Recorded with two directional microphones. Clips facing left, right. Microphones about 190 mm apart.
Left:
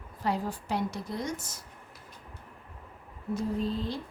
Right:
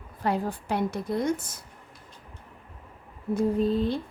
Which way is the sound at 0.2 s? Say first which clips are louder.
Right 3 dB; 55° right (ahead or behind).